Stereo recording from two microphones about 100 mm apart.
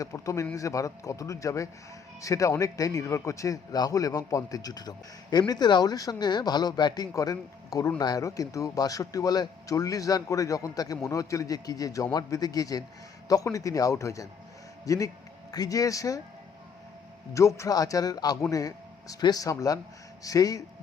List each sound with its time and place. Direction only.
0.0 s a man's voice: 30° left (ahead or behind)
17.3 s a man's voice: 30° left (ahead or behind)